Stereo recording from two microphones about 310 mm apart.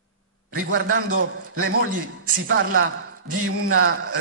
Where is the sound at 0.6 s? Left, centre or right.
Right.